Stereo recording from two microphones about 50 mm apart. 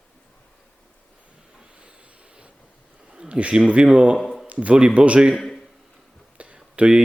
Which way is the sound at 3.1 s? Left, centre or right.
Centre.